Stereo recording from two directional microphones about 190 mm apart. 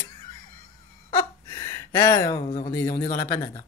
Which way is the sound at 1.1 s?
20° left (ahead or behind).